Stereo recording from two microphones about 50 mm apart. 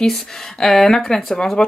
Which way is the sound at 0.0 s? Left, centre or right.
Centre.